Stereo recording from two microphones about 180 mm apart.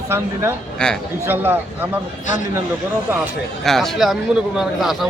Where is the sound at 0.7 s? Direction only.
5° left (ahead or behind).